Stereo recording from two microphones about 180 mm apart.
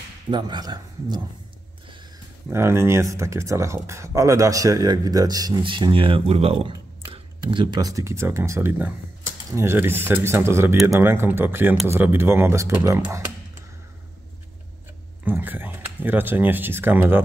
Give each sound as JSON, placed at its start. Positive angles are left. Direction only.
{"t": 0.3, "sound": "speech", "side_deg": -25}
{"t": 2.5, "sound": "speech", "side_deg": -15}
{"t": 15.2, "sound": "speech", "side_deg": -10}